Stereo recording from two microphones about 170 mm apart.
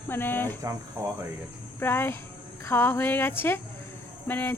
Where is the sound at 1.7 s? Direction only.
15° left (ahead or behind).